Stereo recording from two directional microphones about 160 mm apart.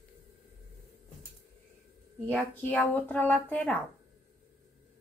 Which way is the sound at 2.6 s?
10° left (ahead or behind).